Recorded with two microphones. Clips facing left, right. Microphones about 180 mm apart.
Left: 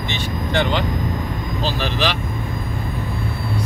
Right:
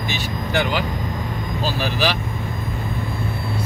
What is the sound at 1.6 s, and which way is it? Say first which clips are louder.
Speech: even; 10° right (ahead or behind).